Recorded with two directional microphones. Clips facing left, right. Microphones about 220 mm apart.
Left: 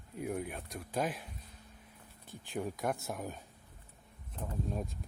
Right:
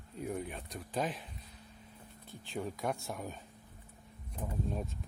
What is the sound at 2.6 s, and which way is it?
Speech, centre (ahead or behind).